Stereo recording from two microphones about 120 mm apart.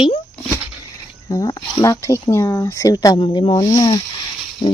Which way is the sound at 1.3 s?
35° left (ahead or behind).